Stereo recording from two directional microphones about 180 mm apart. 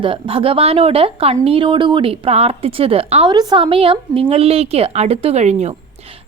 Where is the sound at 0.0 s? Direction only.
30° right (ahead or behind).